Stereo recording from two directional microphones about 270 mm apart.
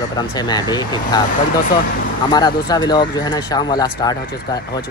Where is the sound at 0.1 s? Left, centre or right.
Centre.